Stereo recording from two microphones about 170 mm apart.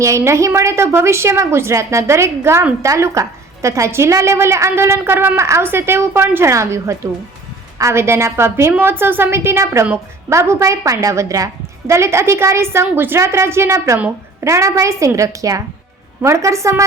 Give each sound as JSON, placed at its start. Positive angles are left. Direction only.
{"t": 0.0, "sound": "a woman's voice", "side_deg": -15}